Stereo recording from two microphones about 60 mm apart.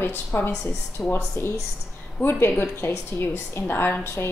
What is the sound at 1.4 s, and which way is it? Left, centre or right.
A woman's voice, left.